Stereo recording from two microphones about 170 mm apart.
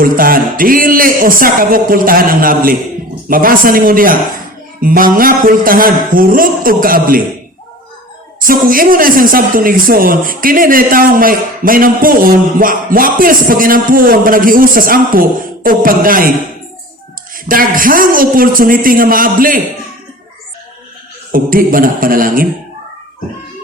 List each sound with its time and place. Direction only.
0.0 s speech: 55° right (ahead or behind)
8.4 s speech: 55° right (ahead or behind)
17.3 s speech: 55° right (ahead or behind)
21.3 s speech: 55° right (ahead or behind)